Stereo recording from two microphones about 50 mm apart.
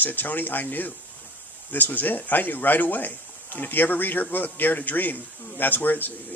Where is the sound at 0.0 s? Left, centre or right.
Left.